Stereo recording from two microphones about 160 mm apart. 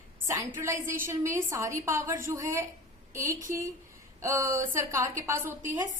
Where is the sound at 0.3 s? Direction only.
15° right (ahead or behind).